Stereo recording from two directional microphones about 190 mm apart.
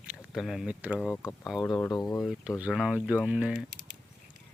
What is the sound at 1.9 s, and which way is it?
Speech, 20° left (ahead or behind).